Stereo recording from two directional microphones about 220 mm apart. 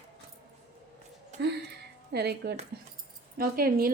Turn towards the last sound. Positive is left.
turn(degrees=-40)  # may be behind; listen again after turning